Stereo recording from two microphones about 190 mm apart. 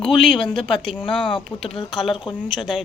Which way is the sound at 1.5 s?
10° left (ahead or behind).